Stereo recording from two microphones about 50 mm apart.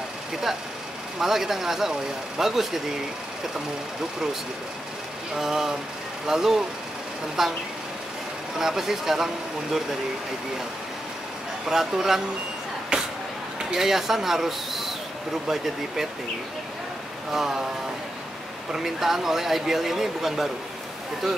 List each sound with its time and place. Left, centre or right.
1.2 s speech: centre
5.3 s speech: centre
8.5 s speech: centre
11.6 s a man's voice: centre
12.9 s a sound: centre
13.7 s a man's voice: centre
17.3 s speech: centre
18.7 s a man's voice: centre